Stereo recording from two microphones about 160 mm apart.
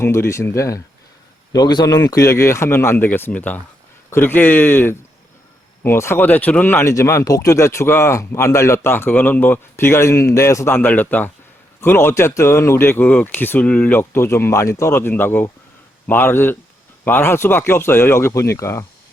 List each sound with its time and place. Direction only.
0.0 s speech: 15° left (ahead or behind)